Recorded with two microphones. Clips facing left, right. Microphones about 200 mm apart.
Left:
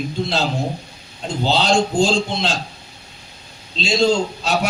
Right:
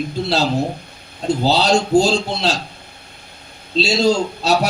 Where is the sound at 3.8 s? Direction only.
40° right (ahead or behind).